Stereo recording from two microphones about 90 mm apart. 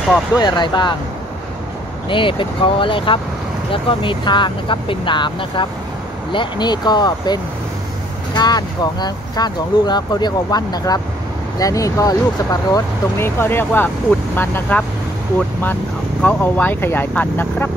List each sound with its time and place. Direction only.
0.4 s speech: 55° left (ahead or behind)
2.0 s speech: 70° left (ahead or behind); by 7.3 s 50° left (ahead or behind)
8.4 s speech: 50° left (ahead or behind)
13.2 s speech: 25° left (ahead or behind)